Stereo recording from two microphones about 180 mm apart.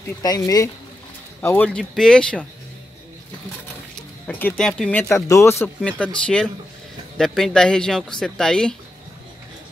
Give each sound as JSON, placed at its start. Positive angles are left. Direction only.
{"t": 0.2, "sound": "speech", "side_deg": 20}
{"t": 4.3, "sound": "speech", "side_deg": 5}
{"t": 5.0, "sound": "speech", "side_deg": 15}